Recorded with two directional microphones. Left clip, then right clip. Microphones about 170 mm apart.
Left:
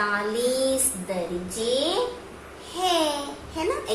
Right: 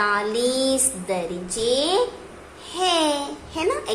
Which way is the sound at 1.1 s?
40° right (ahead or behind).